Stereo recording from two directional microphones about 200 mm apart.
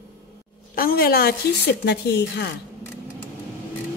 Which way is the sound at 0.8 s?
50° left (ahead or behind).